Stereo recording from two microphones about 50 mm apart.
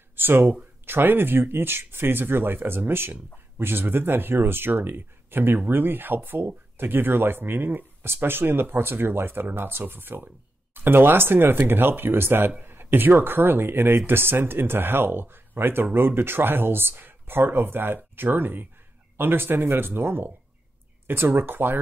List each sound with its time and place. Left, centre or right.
0.1 s speech: right